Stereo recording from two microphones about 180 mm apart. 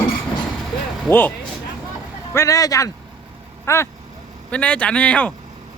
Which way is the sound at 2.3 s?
15° left (ahead or behind).